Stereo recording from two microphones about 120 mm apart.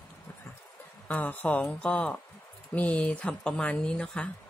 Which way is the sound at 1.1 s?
15° left (ahead or behind).